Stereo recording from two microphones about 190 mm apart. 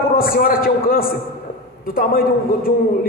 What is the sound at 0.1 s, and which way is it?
A man's voice, 50° left (ahead or behind).